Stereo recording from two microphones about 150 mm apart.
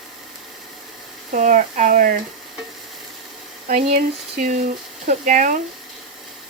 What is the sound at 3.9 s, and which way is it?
Speech, 65° right (ahead or behind).